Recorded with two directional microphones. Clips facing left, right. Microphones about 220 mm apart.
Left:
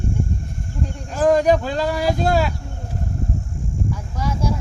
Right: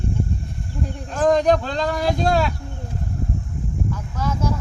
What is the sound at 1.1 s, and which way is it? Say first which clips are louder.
Speech: left 1 dB; 5° left (ahead or behind).